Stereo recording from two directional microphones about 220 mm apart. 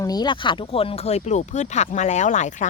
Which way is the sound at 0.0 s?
20° left (ahead or behind).